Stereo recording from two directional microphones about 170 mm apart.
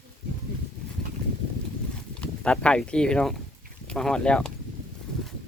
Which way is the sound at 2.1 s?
5° left (ahead or behind).